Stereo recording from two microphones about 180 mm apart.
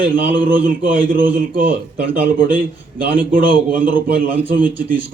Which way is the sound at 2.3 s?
50° right (ahead or behind).